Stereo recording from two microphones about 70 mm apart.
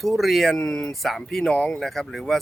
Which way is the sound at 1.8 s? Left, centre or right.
Centre.